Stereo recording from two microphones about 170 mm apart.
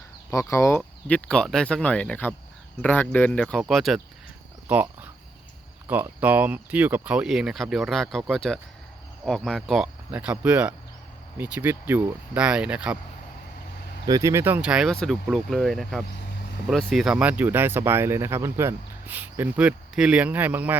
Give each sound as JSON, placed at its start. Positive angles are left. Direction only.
{"t": 0.3, "sound": "speech", "side_deg": 20}
{"t": 0.8, "sound": "speech", "side_deg": 5}
{"t": 5.9, "sound": "speech", "side_deg": -10}
{"t": 14.1, "sound": "speech", "side_deg": -20}